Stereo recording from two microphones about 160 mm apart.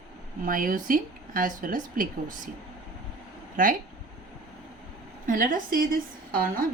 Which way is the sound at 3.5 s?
60° right (ahead or behind).